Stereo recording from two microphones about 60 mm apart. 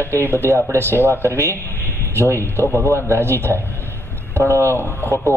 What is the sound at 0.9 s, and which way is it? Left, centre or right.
Speech, left.